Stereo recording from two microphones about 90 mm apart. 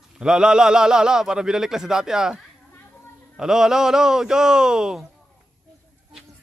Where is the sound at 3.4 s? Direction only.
5° right (ahead or behind).